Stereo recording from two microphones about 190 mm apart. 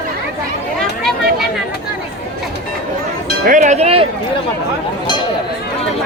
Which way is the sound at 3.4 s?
40° right (ahead or behind).